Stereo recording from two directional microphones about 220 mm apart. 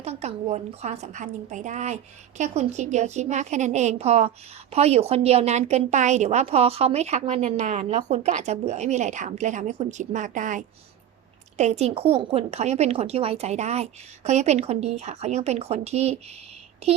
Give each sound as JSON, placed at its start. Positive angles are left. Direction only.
{"t": 0.0, "sound": "a woman's voice", "side_deg": -30}